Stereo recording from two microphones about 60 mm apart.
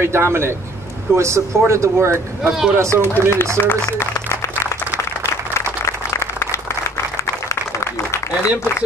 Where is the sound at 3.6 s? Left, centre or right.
Left.